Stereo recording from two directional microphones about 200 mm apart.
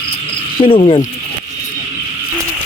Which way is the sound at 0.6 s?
25° left (ahead or behind).